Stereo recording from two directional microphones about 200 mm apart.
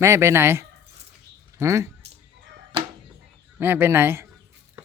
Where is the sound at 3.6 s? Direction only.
10° right (ahead or behind).